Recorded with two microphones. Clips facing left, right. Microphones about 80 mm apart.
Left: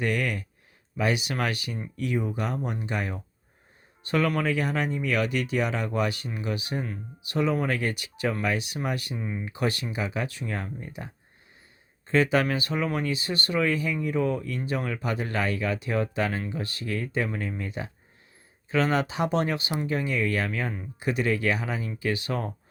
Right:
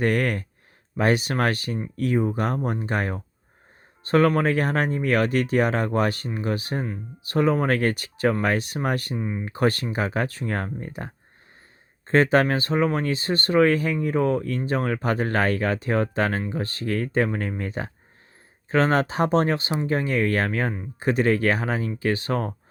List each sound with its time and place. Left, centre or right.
0.0 s speech: right
9.1 s speech: centre
9.4 s speech: right